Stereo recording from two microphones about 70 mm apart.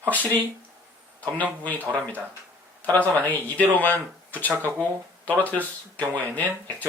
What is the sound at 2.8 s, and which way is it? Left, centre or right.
Speech, left.